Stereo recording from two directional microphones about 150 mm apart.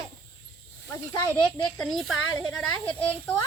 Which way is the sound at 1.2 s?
10° left (ahead or behind).